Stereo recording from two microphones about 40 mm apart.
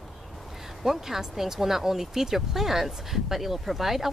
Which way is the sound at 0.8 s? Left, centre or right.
Centre.